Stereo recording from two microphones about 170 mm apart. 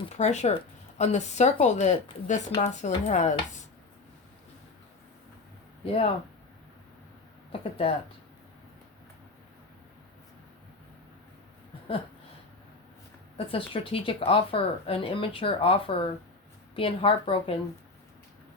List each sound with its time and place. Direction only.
0.1 s speech: 40° left (ahead or behind)
5.8 s speech: 35° left (ahead or behind)
7.6 s speech: 35° left (ahead or behind)
13.3 s speech: 35° left (ahead or behind)